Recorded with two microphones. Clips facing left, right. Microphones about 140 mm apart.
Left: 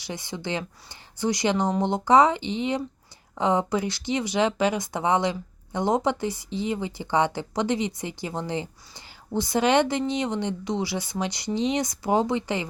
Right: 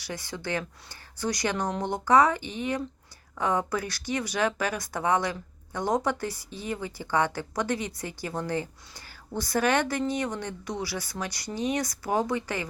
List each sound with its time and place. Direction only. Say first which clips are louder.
0.1 s speech: left 2 dB; 20° left (ahead or behind)